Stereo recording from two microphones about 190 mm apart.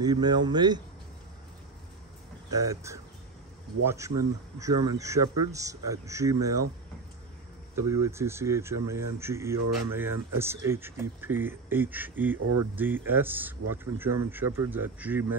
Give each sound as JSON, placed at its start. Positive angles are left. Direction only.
{"t": 0.0, "sound": "speech", "side_deg": -20}
{"t": 2.5, "sound": "speech", "side_deg": -15}
{"t": 7.7, "sound": "speech", "side_deg": -15}